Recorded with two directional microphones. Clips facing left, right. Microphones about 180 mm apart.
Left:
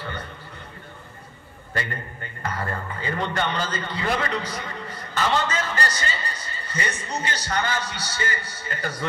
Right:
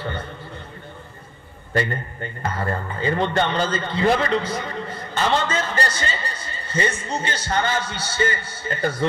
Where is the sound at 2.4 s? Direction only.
25° right (ahead or behind).